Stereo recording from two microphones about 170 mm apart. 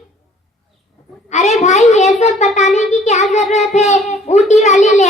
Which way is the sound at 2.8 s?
45° left (ahead or behind).